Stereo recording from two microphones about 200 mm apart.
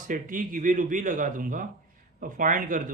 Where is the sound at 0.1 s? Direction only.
40° right (ahead or behind).